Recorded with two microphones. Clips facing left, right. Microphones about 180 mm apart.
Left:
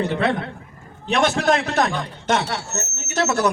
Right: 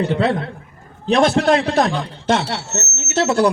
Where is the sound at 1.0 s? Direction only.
35° right (ahead or behind).